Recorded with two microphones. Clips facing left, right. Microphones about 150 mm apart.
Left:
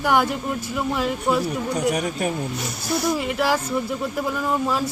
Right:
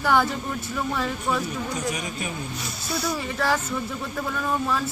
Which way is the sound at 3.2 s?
15° left (ahead or behind).